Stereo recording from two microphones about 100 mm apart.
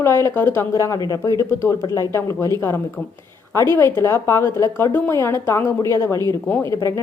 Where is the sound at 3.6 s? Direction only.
25° left (ahead or behind).